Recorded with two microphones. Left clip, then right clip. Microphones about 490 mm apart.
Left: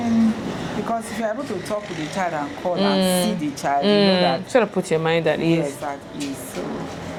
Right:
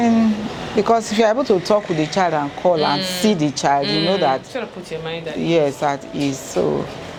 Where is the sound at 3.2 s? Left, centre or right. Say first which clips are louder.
Right 6 dB; right.